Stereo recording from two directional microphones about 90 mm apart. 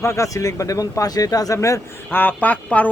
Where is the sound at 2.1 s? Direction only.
20° left (ahead or behind).